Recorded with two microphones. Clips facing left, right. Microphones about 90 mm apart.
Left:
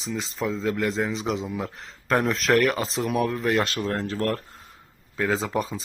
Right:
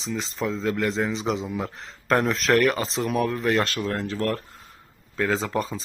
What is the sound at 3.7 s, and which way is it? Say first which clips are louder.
Speech: even; 30° left (ahead or behind).